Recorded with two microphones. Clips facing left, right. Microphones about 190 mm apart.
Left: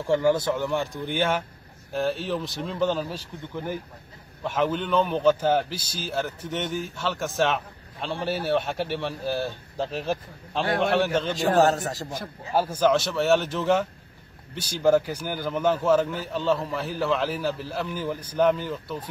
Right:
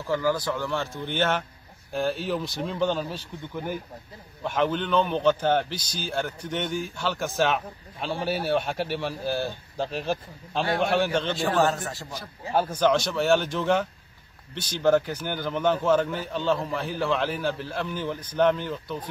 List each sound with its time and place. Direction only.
0.0 s a man's voice: 25° left (ahead or behind)
1.9 s a man's voice: centre (ahead or behind)
11.3 s a man's voice: 40° left (ahead or behind)
12.5 s a man's voice: 5° left (ahead or behind)